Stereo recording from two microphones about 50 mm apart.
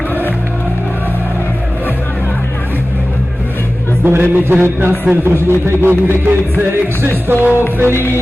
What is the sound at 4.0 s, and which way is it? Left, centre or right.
Speech, right.